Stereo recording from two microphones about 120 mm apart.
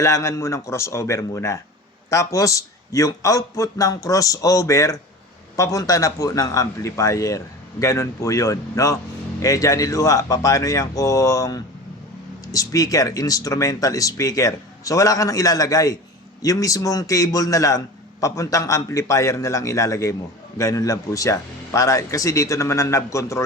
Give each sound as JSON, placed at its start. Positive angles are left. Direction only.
{"t": 0.0, "sound": "a man's voice", "side_deg": 25}